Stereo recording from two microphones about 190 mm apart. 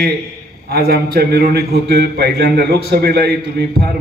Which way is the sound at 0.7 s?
55° right (ahead or behind).